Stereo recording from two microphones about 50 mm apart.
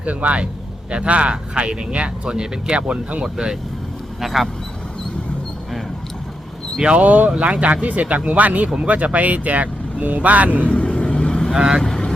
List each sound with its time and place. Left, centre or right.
0.0 s speech: right
4.2 s speech: centre
6.8 s speech: right
10.7 s vehicle: left
11.5 s speech: centre
11.8 s vehicle: centre